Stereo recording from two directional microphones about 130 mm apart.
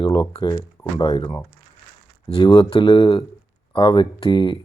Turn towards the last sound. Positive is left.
turn(degrees=35)  # may be behind; listen again after turning